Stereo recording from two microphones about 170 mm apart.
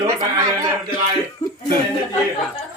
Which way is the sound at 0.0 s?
25° right (ahead or behind).